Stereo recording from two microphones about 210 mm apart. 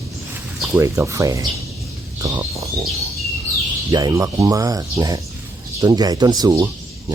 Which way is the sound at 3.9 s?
20° right (ahead or behind).